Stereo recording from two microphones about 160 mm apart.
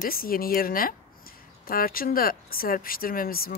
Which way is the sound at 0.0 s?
65° left (ahead or behind).